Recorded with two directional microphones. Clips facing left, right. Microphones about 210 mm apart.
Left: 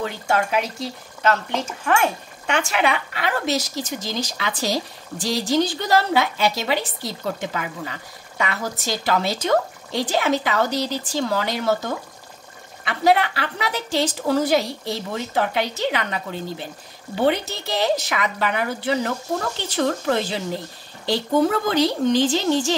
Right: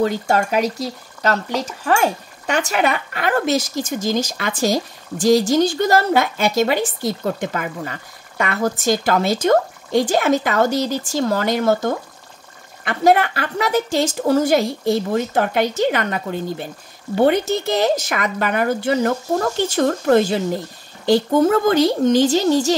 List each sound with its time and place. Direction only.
0.0 s speech: 40° right (ahead or behind)